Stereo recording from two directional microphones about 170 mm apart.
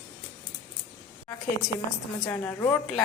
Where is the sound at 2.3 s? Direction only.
10° left (ahead or behind).